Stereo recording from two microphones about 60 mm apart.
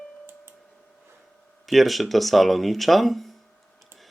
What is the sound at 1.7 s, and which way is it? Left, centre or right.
Speech, centre.